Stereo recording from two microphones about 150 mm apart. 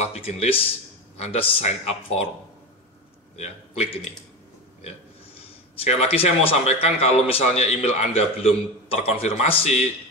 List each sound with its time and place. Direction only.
0.0 s speech: 45° left (ahead or behind)
3.3 s speech: 45° left (ahead or behind)
5.8 s speech: 45° left (ahead or behind)